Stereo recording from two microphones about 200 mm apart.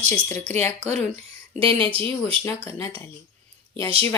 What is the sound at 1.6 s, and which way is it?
Speech, 25° right (ahead or behind).